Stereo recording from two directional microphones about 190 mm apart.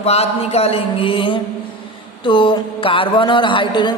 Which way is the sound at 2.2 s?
25° left (ahead or behind).